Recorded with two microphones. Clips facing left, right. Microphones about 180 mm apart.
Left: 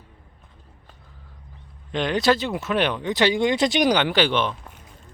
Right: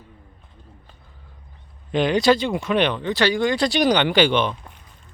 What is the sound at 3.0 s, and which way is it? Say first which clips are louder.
Speech: even; 20° left (ahead or behind).